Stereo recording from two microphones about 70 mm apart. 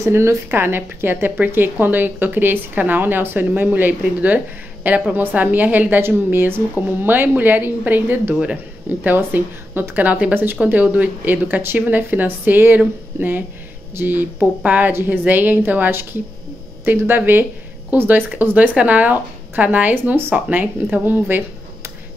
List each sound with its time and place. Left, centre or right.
0.0 s speech: right